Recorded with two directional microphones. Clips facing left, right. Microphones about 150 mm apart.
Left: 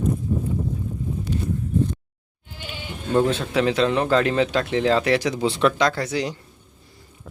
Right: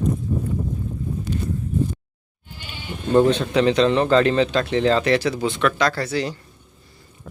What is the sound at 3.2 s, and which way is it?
Speech, 5° left (ahead or behind).